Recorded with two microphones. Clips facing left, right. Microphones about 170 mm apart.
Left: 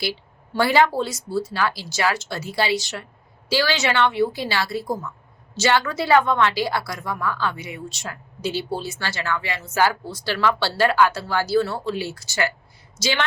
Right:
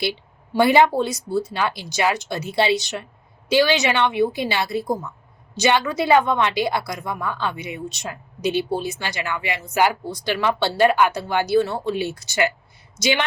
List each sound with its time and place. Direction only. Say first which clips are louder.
0.0 s a woman's voice: right 3 dB; 20° right (ahead or behind)